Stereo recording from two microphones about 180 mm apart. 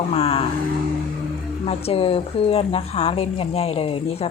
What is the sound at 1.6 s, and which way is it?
A woman's voice, 35° left (ahead or behind).